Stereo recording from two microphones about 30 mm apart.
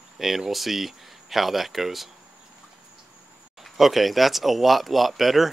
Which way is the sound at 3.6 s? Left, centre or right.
Centre.